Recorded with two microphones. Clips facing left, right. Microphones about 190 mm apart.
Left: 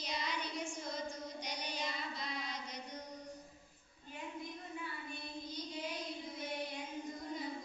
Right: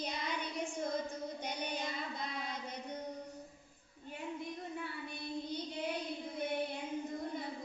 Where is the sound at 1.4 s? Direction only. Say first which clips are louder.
Right 2 dB; 55° right (ahead or behind).